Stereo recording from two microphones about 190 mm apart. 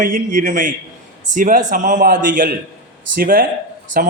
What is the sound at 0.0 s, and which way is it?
Speech, 45° right (ahead or behind).